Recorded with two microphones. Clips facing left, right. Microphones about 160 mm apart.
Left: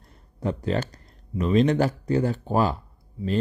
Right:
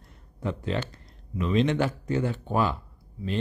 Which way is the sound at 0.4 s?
40° left (ahead or behind).